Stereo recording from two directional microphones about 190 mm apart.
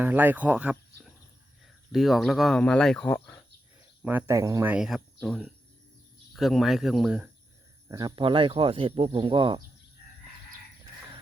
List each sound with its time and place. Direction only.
0.0 s speech: 10° right (ahead or behind); by 3.4 s 10° left (ahead or behind)
4.0 s speech: 10° right (ahead or behind)
7.9 s speech: 20° right (ahead or behind)